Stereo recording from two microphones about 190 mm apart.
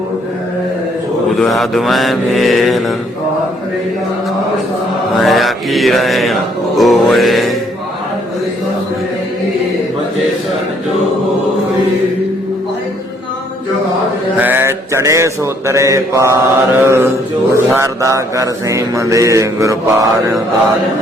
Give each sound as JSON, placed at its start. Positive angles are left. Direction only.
{"t": 1.4, "sound": "mantra", "side_deg": 0}
{"t": 5.2, "sound": "mantra", "side_deg": 0}
{"t": 14.3, "sound": "mantra", "side_deg": -10}